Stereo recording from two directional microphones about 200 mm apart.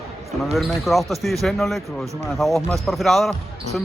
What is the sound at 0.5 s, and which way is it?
Speech, centre (ahead or behind).